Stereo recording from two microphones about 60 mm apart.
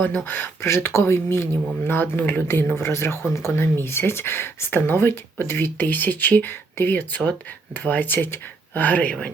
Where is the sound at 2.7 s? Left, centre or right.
Left.